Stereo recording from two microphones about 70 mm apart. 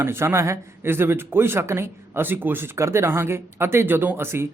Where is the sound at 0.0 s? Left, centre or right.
Right.